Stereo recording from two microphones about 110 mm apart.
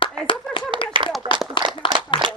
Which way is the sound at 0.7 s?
50° right (ahead or behind).